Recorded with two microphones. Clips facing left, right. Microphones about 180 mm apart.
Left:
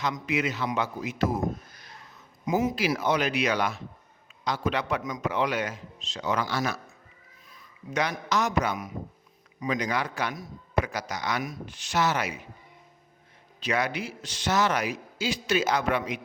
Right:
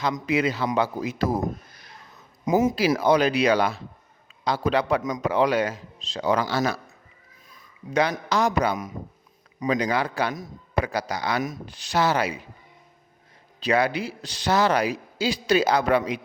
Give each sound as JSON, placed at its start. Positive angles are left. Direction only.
{"t": 0.0, "sound": "a man's voice", "side_deg": -35}
{"t": 2.4, "sound": "a man's voice", "side_deg": -40}
{"t": 13.6, "sound": "a man's voice", "side_deg": -30}